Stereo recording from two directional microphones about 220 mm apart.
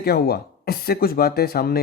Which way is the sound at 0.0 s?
45° left (ahead or behind).